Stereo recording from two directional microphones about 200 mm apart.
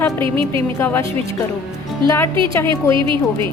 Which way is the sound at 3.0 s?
25° right (ahead or behind).